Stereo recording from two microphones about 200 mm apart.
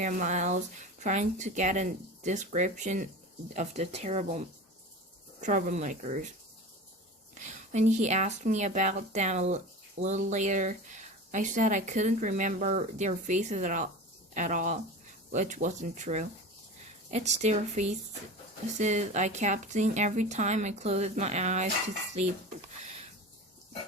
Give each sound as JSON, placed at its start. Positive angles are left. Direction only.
{"t": 0.0, "sound": "speech", "side_deg": -40}
{"t": 7.3, "sound": "speech", "side_deg": -35}
{"t": 22.1, "sound": "a sound", "side_deg": -35}